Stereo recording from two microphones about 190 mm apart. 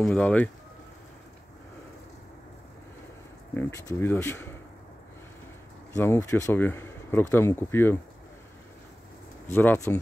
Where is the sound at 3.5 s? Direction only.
15° left (ahead or behind).